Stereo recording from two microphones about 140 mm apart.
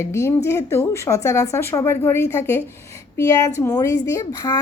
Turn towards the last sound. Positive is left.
turn(degrees=25)  # may be behind; listen again after turning